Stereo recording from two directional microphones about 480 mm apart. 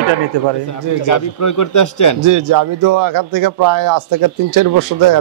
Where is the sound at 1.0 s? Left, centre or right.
Left.